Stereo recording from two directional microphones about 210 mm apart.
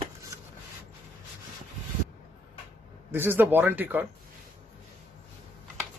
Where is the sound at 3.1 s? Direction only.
10° right (ahead or behind).